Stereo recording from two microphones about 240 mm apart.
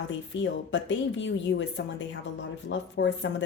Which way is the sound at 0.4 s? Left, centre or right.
Left.